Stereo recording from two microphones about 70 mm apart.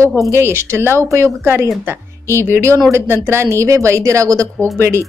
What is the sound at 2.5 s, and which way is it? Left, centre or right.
Speech, right.